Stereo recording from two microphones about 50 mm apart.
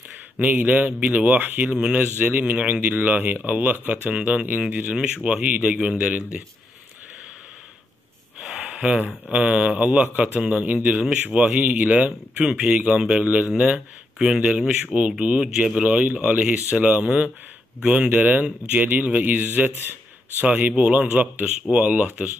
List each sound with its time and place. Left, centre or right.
0.4 s a man's voice: right
5.4 s a man's voice: right
8.6 s a sound: right
9.3 s a man's voice: right
13.2 s a man's voice: right
14.1 s speech: centre
15.0 s a man's voice: right
18.1 s speech: right
20.4 s a man's voice: right